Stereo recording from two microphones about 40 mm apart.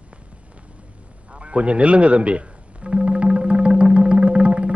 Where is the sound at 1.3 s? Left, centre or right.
Right.